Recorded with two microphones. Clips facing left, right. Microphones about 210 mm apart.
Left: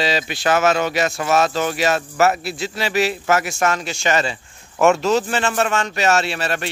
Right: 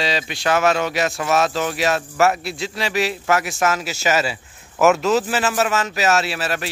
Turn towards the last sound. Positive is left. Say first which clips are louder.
# left 1 dB
turn(degrees=0)  # may be behind; listen again after turning